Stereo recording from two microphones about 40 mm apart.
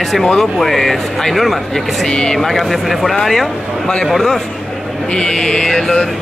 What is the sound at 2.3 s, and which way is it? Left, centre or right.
Speech, centre.